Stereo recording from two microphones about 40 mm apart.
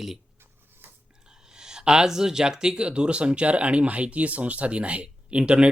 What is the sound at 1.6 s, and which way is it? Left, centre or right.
Speech, centre.